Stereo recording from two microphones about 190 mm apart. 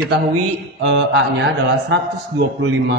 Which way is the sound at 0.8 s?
80° right.